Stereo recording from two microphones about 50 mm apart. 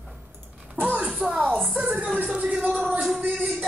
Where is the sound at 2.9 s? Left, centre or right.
Centre.